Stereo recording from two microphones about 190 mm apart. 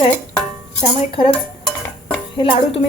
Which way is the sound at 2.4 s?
25° left (ahead or behind).